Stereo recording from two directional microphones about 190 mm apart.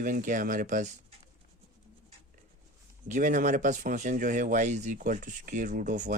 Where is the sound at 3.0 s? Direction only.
40° right (ahead or behind).